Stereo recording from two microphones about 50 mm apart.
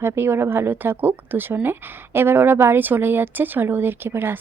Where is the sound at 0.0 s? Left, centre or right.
Right.